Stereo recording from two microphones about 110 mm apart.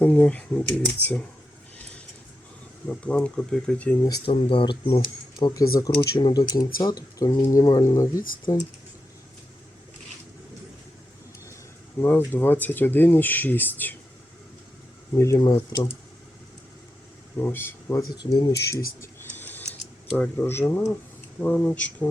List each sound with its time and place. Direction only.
0.0 s speech: 15° left (ahead or behind)
2.8 s speech: 15° left (ahead or behind)
4.3 s speech: 55° left (ahead or behind); by 8.5 s 30° left (ahead or behind)
12.0 s speech: 20° left (ahead or behind)
15.2 s speech: 30° left (ahead or behind)
17.3 s speech: 20° left (ahead or behind)
18.4 s a sound: 30° left (ahead or behind)
20.1 s speech: 15° left (ahead or behind)